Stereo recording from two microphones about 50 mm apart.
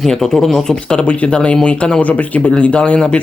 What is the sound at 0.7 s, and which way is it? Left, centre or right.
Speech, centre.